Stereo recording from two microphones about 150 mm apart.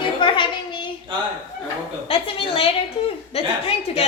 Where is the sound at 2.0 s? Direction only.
40° left (ahead or behind).